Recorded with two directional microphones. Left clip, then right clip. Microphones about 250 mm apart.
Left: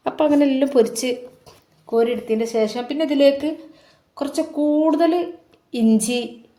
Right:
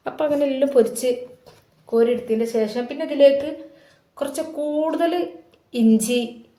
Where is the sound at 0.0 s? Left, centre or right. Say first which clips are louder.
Left 3 dB; left.